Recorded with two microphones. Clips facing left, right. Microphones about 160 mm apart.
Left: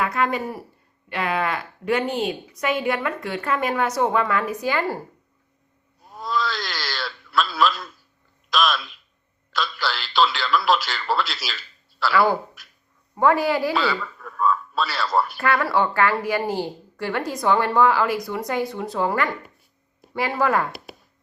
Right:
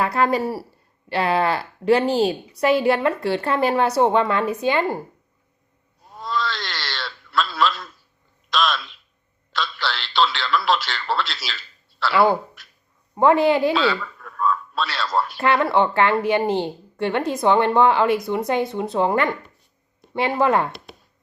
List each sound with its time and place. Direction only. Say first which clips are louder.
0.0 s a woman's voice: right 3 dB; 35° right (ahead or behind)
6.1 s a sound: even; centre (ahead or behind)
9.5 s speech: even; centre (ahead or behind)
12.1 s a woman's voice: right 2 dB; 20° right (ahead or behind)
12.6 s dog: right 1 dB; centre (ahead or behind)
13.1 s a woman's voice: right 3 dB; 25° right (ahead or behind)
13.7 s speech: right 2 dB; centre (ahead or behind)
15.4 s a woman's voice: right 6 dB; 25° right (ahead or behind)